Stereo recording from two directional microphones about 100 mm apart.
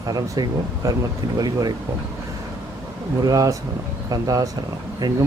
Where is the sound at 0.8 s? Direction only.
35° right (ahead or behind).